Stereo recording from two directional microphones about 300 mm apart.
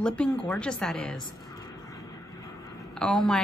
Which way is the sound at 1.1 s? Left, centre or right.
Centre.